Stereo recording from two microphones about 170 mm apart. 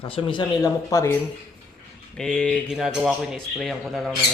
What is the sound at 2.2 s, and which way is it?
Speech, 5° left (ahead or behind).